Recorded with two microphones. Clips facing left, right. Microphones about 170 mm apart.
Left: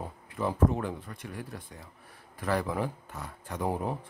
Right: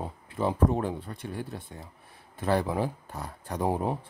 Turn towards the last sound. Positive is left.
turn(degrees=-30)  # may be behind; listen again after turning